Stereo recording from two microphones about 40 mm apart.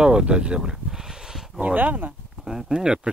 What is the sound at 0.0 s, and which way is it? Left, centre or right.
Speech, right.